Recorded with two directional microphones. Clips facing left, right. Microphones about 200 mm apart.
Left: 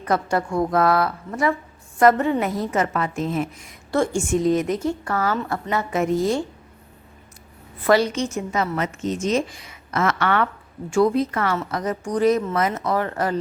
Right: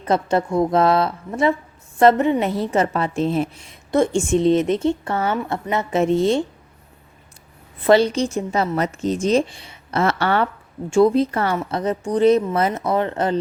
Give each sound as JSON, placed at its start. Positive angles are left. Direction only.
{"t": 0.0, "sound": "a woman's voice", "side_deg": -25}
{"t": 7.9, "sound": "a woman's voice", "side_deg": -30}